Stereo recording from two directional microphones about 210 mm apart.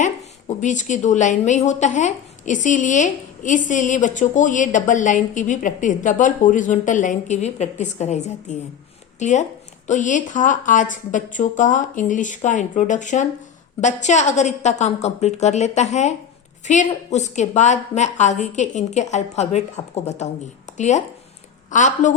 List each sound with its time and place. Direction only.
0.4 s speech: 35° left (ahead or behind)